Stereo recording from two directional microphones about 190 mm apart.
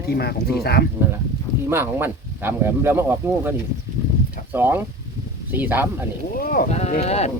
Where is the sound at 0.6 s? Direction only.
55° left (ahead or behind).